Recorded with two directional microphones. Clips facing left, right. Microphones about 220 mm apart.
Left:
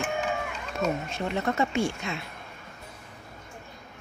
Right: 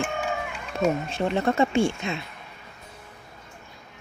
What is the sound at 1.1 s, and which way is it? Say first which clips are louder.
Speech: right 5 dB; 30° right (ahead or behind).